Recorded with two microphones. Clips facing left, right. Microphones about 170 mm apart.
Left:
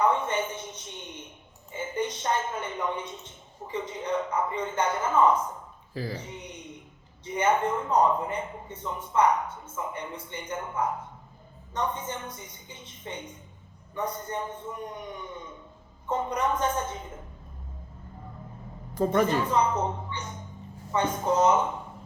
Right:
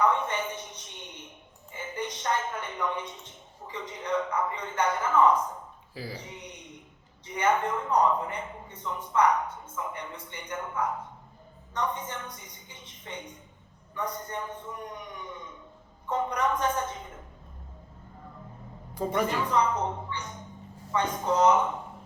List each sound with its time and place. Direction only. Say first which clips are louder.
0.0 s a sound: left 1 dB; 25° left (ahead or behind)
1.7 s a woman's voice: left 5 dB; 25° left (ahead or behind)
5.9 s speech: left 5 dB; 10° right (ahead or behind)
6.2 s a man's voice: left 3 dB; 25° left (ahead or behind)
16.0 s a man's voice: even; 25° left (ahead or behind)
19.5 s a man's voice: left 1 dB; 25° left (ahead or behind)
20.1 s a sound: even; 25° left (ahead or behind)
20.9 s a man's voice: left 2 dB; 25° left (ahead or behind)